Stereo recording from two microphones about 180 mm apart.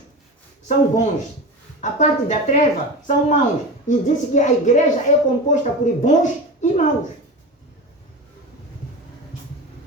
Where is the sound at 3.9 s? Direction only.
45° left (ahead or behind).